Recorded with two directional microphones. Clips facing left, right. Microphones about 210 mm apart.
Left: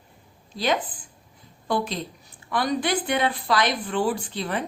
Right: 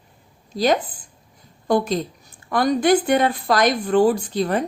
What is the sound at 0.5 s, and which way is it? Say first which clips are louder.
A woman's voice: right 6 dB; 40° right (ahead or behind).